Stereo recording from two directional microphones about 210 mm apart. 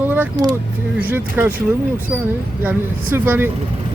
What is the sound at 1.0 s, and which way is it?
Speech, 10° right (ahead or behind).